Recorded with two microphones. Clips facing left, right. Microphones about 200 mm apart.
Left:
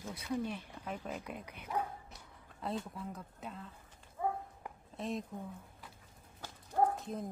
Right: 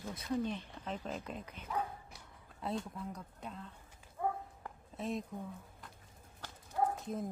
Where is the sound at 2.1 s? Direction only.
Centre (ahead or behind).